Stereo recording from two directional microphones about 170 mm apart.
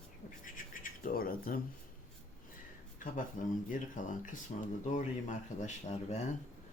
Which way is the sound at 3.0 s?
50° left (ahead or behind).